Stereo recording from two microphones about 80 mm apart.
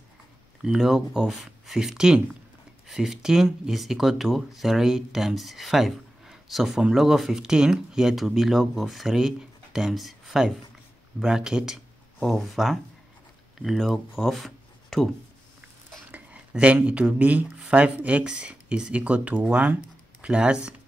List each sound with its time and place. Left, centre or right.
0.6 s speech: centre
16.1 s speech: centre